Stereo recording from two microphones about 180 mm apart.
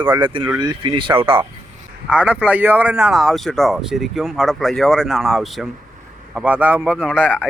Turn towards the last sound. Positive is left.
turn(degrees=-5)  # may be behind; listen again after turning